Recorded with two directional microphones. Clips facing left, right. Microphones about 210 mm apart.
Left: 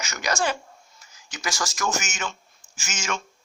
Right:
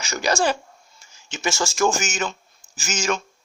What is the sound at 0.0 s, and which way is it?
Speech, 30° right (ahead or behind).